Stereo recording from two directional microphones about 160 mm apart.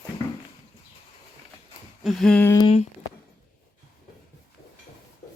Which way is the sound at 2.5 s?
30° left (ahead or behind).